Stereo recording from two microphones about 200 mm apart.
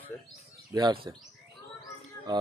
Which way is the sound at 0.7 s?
20° right (ahead or behind).